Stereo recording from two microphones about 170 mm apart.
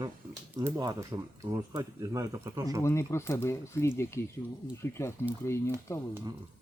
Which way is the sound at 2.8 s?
15° left (ahead or behind).